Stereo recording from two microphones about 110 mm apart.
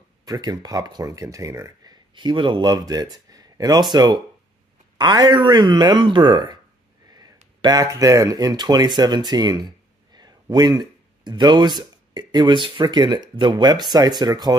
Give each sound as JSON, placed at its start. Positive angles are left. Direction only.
{"t": 0.2, "sound": "speech", "side_deg": -40}
{"t": 7.1, "sound": "a sound", "side_deg": -35}
{"t": 7.6, "sound": "speech", "side_deg": -35}